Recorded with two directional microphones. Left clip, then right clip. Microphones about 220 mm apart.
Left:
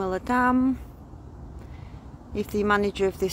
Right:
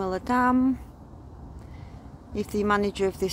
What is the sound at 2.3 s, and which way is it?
Speech, centre (ahead or behind).